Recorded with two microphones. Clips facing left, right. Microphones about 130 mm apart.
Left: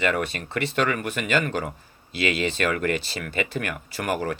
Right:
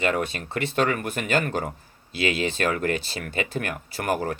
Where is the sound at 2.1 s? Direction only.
60° left (ahead or behind).